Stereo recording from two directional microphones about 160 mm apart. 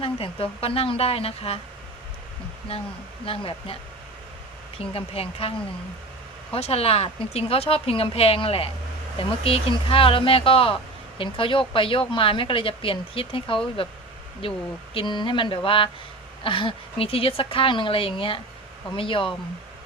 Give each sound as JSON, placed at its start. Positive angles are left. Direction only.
{"t": 0.0, "sound": "speech", "side_deg": 35}
{"t": 2.7, "sound": "speech", "side_deg": 35}
{"t": 4.8, "sound": "speech", "side_deg": 40}